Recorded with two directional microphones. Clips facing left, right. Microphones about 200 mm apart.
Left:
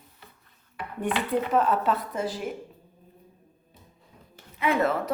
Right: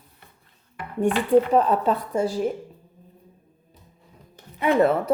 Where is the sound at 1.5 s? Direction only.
35° right (ahead or behind).